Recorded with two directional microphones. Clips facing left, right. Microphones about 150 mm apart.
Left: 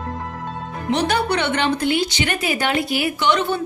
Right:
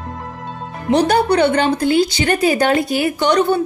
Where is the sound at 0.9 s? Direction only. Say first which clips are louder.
Right 6 dB; 35° right (ahead or behind).